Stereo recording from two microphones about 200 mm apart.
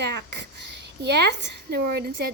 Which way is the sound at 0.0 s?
55° right (ahead or behind).